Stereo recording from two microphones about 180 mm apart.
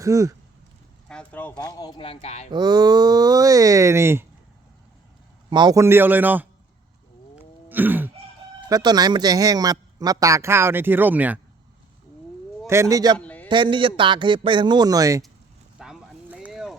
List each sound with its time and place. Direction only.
0.0 s a man's voice: 15° right (ahead or behind)
1.0 s a sound: 5° left (ahead or behind)
1.5 s speech: 20° left (ahead or behind)
2.5 s a man's voice: 25° right (ahead or behind)
5.5 s a man's voice: 25° right (ahead or behind)
7.7 s throat clearing: 10° right (ahead or behind)
8.7 s a man's voice: 20° right (ahead or behind)
12.6 s a man's voice: 15° right (ahead or behind)
13.1 s a sound: 10° left (ahead or behind)
13.5 s a man's voice: 25° right (ahead or behind)
15.8 s a sound: 5° right (ahead or behind)